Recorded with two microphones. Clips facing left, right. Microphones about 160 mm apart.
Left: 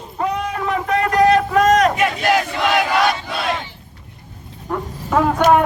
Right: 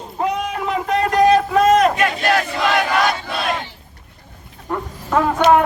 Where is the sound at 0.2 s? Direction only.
20° right (ahead or behind).